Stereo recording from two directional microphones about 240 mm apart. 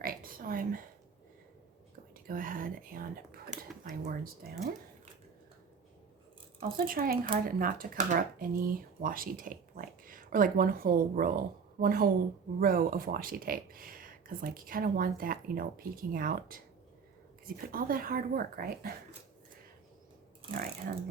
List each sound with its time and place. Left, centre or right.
0.0 s whispering: right
2.2 s whispering: right
3.8 s a sound: right
6.6 s speech: right